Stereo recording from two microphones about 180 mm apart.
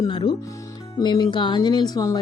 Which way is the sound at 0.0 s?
25° left (ahead or behind).